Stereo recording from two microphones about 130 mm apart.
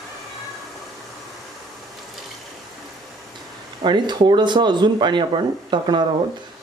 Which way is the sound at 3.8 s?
35° right (ahead or behind).